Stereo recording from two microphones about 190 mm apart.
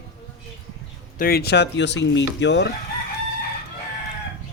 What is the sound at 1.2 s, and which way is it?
Speech, 55° left (ahead or behind).